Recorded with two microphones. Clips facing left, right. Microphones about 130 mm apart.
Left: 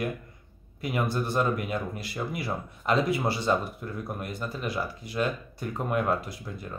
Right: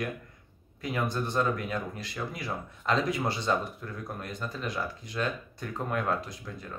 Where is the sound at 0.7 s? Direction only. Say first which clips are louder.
Left 2 dB; 10° left (ahead or behind).